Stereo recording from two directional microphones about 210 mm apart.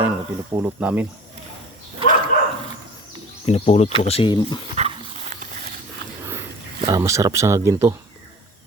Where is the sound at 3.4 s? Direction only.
30° left (ahead or behind).